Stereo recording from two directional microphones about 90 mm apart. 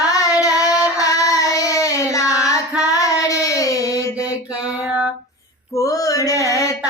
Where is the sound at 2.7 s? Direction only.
10° right (ahead or behind).